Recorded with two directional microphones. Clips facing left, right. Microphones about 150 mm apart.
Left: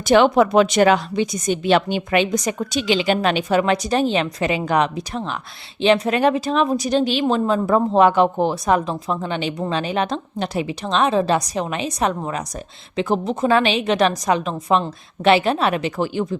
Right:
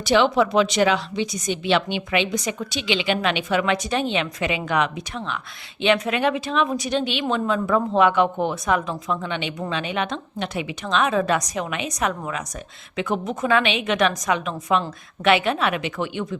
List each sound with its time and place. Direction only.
0.0 s a woman's voice: 50° left (ahead or behind)